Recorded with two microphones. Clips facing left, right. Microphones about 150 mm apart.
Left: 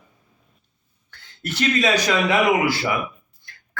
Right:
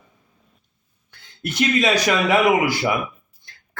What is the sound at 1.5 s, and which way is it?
Speech, 15° right (ahead or behind).